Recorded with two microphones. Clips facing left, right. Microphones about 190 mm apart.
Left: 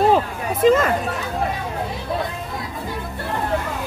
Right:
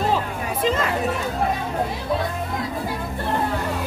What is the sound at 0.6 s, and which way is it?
Speech, 50° left (ahead or behind).